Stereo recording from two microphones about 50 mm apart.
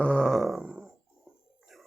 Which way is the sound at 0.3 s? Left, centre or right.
Centre.